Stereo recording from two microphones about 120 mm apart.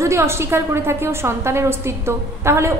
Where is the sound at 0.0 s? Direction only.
25° right (ahead or behind).